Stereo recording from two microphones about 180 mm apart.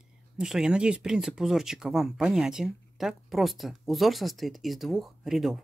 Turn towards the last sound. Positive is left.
turn(degrees=0)  # may be behind; listen again after turning